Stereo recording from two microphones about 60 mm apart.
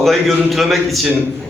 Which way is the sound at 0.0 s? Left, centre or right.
Centre.